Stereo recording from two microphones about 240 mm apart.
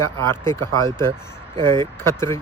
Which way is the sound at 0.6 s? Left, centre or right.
Centre.